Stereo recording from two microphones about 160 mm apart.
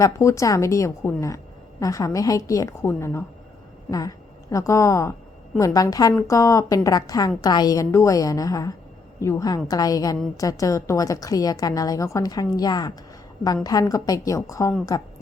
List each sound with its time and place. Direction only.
0.0 s a woman's voice: 20° left (ahead or behind)